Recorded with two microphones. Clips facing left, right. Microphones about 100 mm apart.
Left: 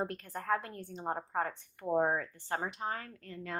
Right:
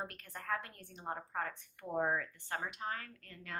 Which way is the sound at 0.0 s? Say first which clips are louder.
Left 8 dB; 30° left (ahead or behind).